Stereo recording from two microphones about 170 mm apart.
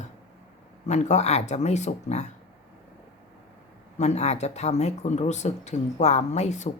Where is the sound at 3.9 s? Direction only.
40° left (ahead or behind).